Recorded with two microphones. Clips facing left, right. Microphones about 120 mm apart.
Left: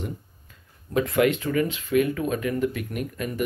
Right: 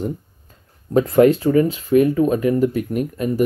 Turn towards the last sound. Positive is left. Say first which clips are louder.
# right 9 dB
turn(degrees=-35)  # may be behind; listen again after turning